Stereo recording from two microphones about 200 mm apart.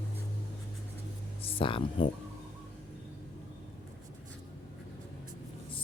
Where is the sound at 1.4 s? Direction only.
25° left (ahead or behind).